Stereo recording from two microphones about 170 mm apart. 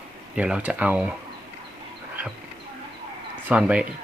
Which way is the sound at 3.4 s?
5° right (ahead or behind).